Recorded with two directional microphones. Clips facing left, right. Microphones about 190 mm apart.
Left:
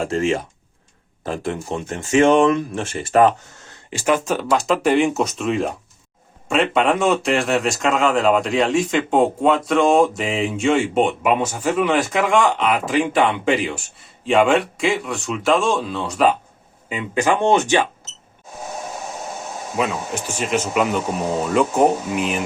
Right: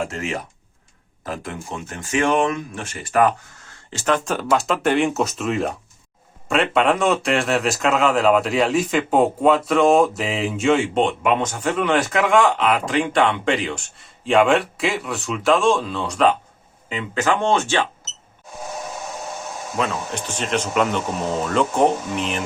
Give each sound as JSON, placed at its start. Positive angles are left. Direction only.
{"t": 0.0, "sound": "speech", "side_deg": 30}
{"t": 3.8, "sound": "speech", "side_deg": 10}
{"t": 4.3, "sound": "speech", "side_deg": 0}
{"t": 19.7, "sound": "speech", "side_deg": 5}